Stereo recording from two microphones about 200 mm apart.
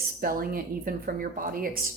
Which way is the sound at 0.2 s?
45° right (ahead or behind).